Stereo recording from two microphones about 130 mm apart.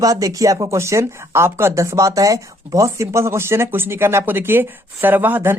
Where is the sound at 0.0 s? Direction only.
25° right (ahead or behind).